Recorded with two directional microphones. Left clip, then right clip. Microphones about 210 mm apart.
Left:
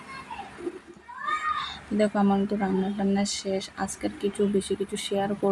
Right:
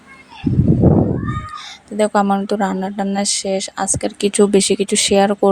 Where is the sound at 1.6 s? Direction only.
50° right (ahead or behind).